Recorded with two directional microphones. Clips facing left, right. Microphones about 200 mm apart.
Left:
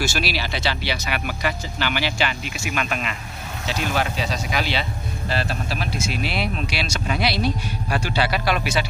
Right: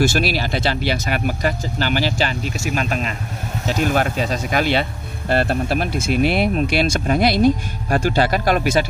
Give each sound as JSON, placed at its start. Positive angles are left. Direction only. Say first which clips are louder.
{"t": 0.0, "sound": "speech", "louder": "right 7 dB", "side_deg": -50}
{"t": 3.6, "sound": "speech", "louder": "right 5 dB", "side_deg": -45}